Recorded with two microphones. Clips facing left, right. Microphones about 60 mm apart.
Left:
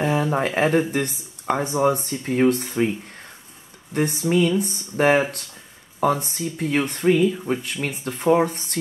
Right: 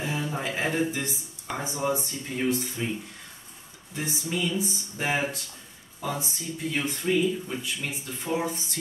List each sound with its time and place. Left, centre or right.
0.0 s a sound: left
0.6 s speech: left
3.9 s speech: left